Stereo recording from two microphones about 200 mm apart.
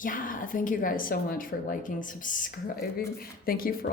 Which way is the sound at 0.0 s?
45° left (ahead or behind).